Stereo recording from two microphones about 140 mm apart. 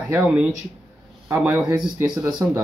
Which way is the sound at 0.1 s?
5° right (ahead or behind).